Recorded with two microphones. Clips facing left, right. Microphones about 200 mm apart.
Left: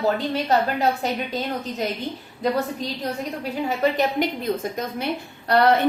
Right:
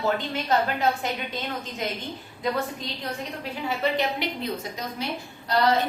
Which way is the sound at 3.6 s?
45° left (ahead or behind).